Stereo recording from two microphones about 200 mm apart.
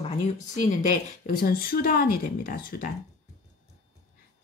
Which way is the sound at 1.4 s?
45° left (ahead or behind).